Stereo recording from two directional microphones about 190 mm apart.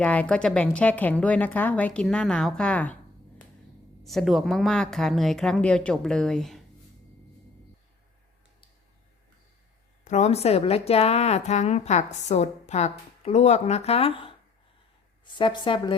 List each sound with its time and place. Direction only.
0.0 s a woman's voice: 5° left (ahead or behind)
4.0 s a woman's voice: centre (ahead or behind)
10.0 s a woman's voice: 40° left (ahead or behind)
15.4 s a woman's voice: 25° left (ahead or behind)